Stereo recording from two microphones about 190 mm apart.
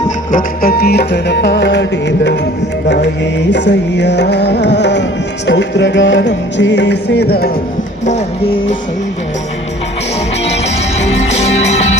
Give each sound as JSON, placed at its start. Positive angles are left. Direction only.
{"t": 0.3, "sound": "music", "side_deg": 45}
{"t": 8.0, "sound": "music", "side_deg": 35}
{"t": 10.6, "sound": "music", "side_deg": 35}